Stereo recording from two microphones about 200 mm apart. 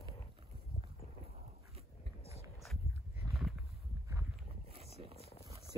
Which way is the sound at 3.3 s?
Centre (ahead or behind).